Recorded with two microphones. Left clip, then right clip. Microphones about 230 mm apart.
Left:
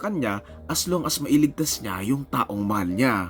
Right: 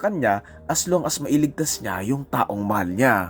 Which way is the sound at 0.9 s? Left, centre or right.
Left.